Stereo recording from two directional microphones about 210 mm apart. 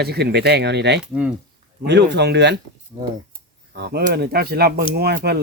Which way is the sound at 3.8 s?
50° right (ahead or behind).